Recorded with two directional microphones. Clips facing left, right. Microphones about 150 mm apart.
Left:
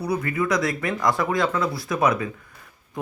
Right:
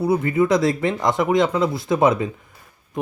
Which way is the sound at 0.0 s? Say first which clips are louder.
Right 6 dB; 25° right (ahead or behind).